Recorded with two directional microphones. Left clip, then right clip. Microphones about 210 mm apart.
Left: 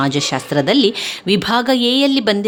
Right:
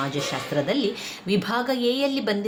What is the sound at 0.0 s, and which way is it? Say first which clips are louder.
Speech: left 9 dB; 50° left (ahead or behind).